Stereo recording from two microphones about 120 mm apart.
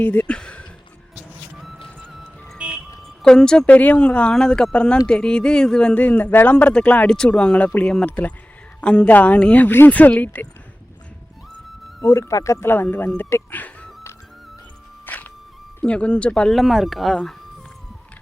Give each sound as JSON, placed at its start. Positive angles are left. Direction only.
{"t": 0.0, "sound": "a sound", "side_deg": 15}
{"t": 2.1, "sound": "music", "side_deg": -5}
{"t": 3.2, "sound": "speech", "side_deg": 5}
{"t": 12.0, "sound": "speech", "side_deg": 25}
{"t": 15.0, "sound": "music", "side_deg": 15}
{"t": 15.8, "sound": "speech", "side_deg": 10}